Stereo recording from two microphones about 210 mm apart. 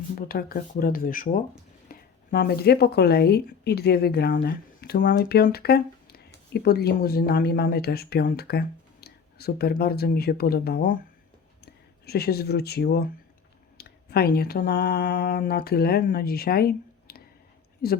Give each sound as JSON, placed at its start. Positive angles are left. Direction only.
{"t": 0.2, "sound": "speech", "side_deg": 45}